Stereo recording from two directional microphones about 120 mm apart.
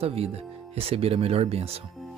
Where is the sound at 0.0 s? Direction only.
55° right (ahead or behind).